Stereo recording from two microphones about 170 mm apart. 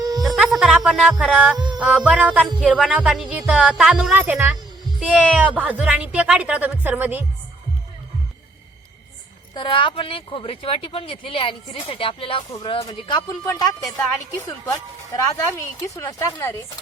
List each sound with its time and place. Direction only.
0.0 s a sound: 20° right (ahead or behind)
0.3 s music: centre (ahead or behind)
1.5 s music: 25° right (ahead or behind)
1.8 s speech: 5° right (ahead or behind)
2.6 s music: 5° right (ahead or behind)
2.9 s speech: 5° right (ahead or behind)
9.6 s speech: 30° left (ahead or behind)